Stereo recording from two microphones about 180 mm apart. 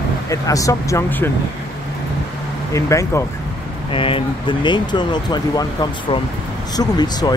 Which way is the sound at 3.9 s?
30° left (ahead or behind).